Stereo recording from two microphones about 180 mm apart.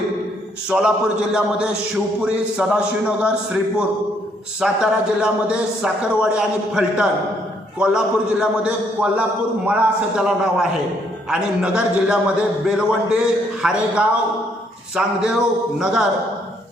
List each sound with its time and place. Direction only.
0.7 s a man's voice: 5° right (ahead or behind)